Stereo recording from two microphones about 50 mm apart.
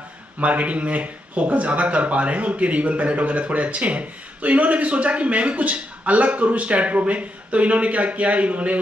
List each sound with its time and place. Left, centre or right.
0.4 s speech: right